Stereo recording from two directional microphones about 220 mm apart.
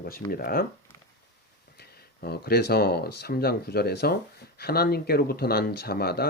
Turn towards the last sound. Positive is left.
turn(degrees=45)  # may be behind; listen again after turning